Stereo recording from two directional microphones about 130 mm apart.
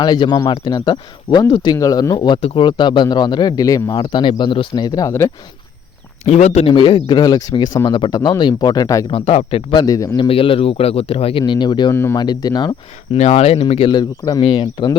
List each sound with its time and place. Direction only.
0.0 s speech: 35° left (ahead or behind)
6.2 s speech: 60° left (ahead or behind)
6.7 s speech: 40° left (ahead or behind)
9.0 s speech: 45° left (ahead or behind)
9.7 s speech: 30° left (ahead or behind)
10.2 s speech: 45° left (ahead or behind)
13.1 s speech: 55° left (ahead or behind); by 14.9 s 35° left (ahead or behind)